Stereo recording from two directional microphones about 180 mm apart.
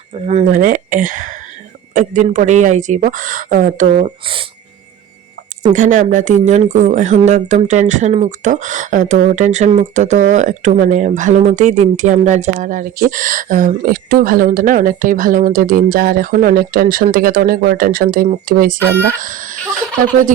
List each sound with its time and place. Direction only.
0.3 s speech: 45° right (ahead or behind)
5.7 s speech: 45° right (ahead or behind)